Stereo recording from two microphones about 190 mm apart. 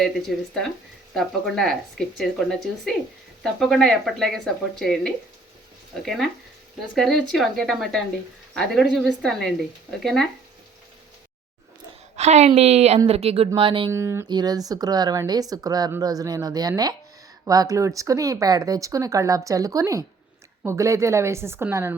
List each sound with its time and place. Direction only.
0.0 s speech: centre (ahead or behind)
12.1 s a woman's voice: 35° right (ahead or behind)
13.9 s speech: 15° right (ahead or behind)